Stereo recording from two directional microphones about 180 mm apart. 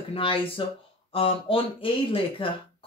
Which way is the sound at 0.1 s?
30° left (ahead or behind).